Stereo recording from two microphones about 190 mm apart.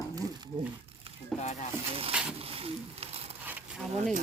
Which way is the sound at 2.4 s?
30° right (ahead or behind).